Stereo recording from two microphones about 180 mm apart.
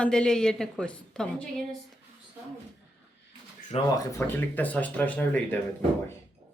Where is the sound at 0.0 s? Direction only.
5° left (ahead or behind).